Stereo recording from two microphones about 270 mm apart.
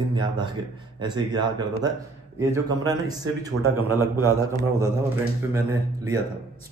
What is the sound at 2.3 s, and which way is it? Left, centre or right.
A man's voice, centre.